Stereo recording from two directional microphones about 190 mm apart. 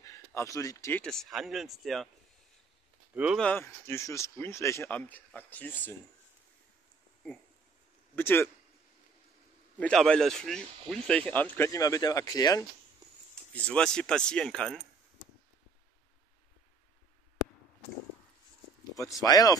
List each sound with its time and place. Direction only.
0.0 s speech: 15° left (ahead or behind)
1.0 s speech: centre (ahead or behind)
3.3 s speech: 10° left (ahead or behind)
8.2 s speech: 10° left (ahead or behind)
9.8 s speech: 5° left (ahead or behind)
13.3 s speech: 5° left (ahead or behind)
18.9 s speech: 20° left (ahead or behind)